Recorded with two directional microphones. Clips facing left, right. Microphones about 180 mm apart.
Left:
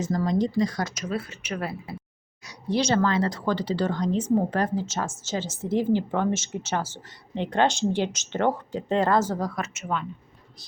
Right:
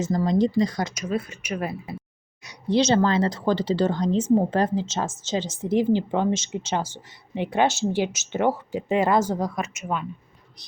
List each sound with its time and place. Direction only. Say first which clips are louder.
0.0 s speech: right 3 dB; 25° right (ahead or behind)